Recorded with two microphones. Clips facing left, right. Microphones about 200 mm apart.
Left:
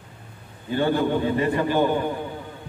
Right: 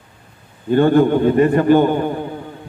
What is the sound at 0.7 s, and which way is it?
A man's voice, 55° right (ahead or behind).